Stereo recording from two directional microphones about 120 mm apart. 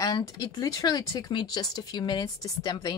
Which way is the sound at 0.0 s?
30° left (ahead or behind).